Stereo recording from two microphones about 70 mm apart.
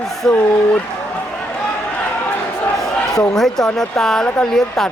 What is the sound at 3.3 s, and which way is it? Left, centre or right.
Speech, centre.